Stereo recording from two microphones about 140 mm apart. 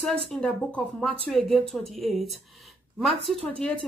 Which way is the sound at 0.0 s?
5° left (ahead or behind).